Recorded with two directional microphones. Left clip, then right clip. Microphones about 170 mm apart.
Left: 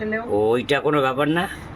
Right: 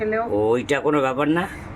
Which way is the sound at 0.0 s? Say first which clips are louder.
Even; 10° left (ahead or behind).